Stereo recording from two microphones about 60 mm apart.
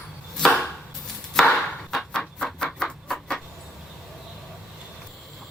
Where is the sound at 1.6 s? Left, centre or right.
Centre.